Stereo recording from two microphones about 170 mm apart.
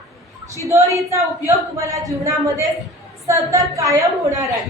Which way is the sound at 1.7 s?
20° right (ahead or behind).